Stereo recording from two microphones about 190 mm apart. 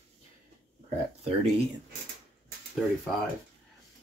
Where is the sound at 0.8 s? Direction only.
35° right (ahead or behind).